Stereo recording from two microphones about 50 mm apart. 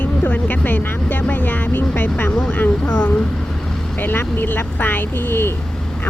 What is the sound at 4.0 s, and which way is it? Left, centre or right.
Speech, left.